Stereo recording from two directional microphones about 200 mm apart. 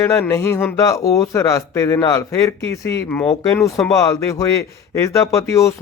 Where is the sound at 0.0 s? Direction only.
15° left (ahead or behind).